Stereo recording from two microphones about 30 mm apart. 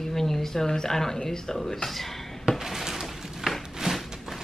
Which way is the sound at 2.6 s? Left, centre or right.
Centre.